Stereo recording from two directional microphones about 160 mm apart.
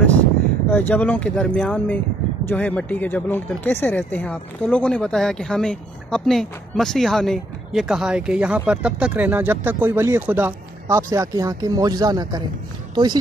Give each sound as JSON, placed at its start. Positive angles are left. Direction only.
{"t": 0.7, "sound": "speech", "side_deg": 10}